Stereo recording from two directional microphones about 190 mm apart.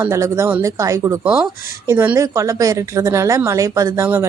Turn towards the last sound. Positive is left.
turn(degrees=-15)  # may be behind; listen again after turning